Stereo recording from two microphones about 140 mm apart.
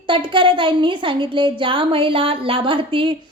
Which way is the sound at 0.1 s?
35° right (ahead or behind).